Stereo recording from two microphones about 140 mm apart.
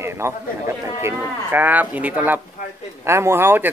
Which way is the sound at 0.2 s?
20° right (ahead or behind).